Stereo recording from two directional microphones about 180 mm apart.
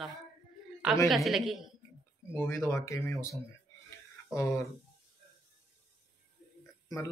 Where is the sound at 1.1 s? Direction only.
Centre (ahead or behind).